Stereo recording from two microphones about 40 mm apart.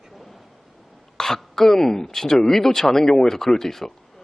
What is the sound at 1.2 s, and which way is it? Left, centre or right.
Throat clearing, centre.